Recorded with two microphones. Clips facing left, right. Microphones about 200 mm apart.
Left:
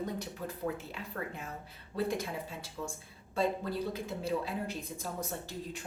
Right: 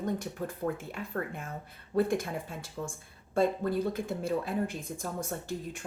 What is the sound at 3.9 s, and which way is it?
Speech, 50° right (ahead or behind).